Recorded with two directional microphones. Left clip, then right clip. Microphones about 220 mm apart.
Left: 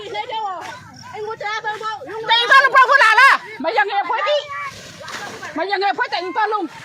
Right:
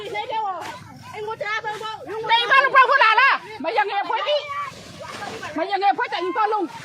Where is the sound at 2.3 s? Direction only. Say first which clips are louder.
Left 4 dB; 55° left (ahead or behind).